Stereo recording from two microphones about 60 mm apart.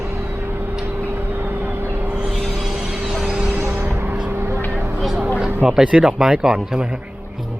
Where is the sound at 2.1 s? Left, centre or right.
Centre.